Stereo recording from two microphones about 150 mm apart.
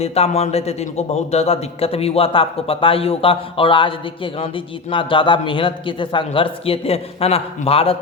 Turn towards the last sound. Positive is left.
turn(degrees=40)  # may be behind; listen again after turning